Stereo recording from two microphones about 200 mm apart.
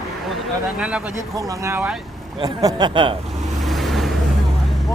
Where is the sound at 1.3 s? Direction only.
15° right (ahead or behind).